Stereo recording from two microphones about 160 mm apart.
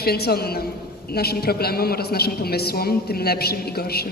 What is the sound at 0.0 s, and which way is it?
A woman's voice, 75° left (ahead or behind).